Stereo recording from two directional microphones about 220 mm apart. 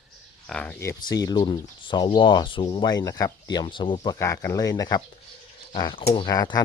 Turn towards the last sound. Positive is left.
turn(degrees=15)  # may be behind; listen again after turning